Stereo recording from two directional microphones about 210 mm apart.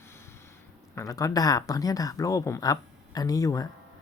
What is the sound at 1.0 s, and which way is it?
Speech, 15° left (ahead or behind).